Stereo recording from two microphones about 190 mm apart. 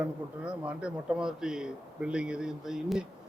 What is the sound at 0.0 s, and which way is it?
Speech, 5° right (ahead or behind).